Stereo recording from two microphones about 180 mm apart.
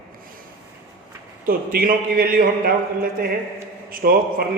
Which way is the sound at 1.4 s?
55° right (ahead or behind).